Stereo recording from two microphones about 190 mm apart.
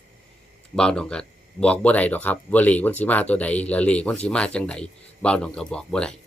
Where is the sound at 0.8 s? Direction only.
5° left (ahead or behind).